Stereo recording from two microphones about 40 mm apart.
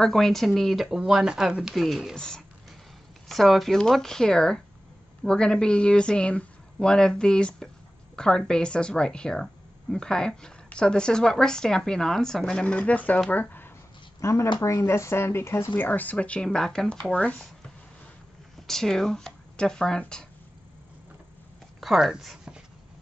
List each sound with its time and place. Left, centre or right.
0.0 s speech: centre
0.8 s speech: centre
2.1 s speech: centre
3.3 s speech: centre
3.9 s speech: centre
12.5 s speech: left
13.3 s speech: left
14.9 s speech: left
15.8 s speech: left
16.4 s speech: centre
17.1 s speech: left
18.7 s speech: centre
21.7 s speech: centre